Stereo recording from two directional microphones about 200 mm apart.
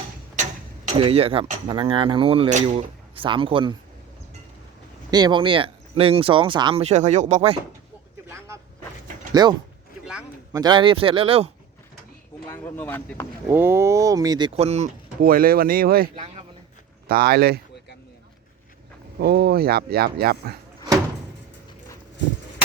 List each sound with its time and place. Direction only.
0.9 s speech: 30° right (ahead or behind)
5.1 s speech: 20° right (ahead or behind)
8.3 s vehicle: 15° right (ahead or behind)
9.3 s speech: 20° right (ahead or behind)
12.5 s speech: 10° left (ahead or behind)
13.5 s speech: 10° right (ahead or behind); by 14.8 s 30° right (ahead or behind)
15.2 s speech: 45° right (ahead or behind)
17.1 s speech: 50° right (ahead or behind)
19.2 s speech: 50° right (ahead or behind)